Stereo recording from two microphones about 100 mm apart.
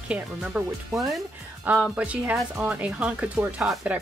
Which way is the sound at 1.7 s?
15° right (ahead or behind).